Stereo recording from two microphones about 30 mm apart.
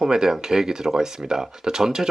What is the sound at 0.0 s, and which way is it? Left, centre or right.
Speech, right.